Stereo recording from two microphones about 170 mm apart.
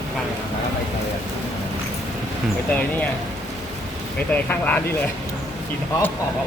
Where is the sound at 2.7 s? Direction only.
10° left (ahead or behind).